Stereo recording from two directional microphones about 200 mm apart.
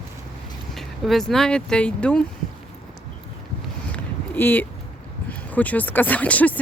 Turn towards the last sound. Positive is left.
turn(degrees=5)  # may be behind; listen again after turning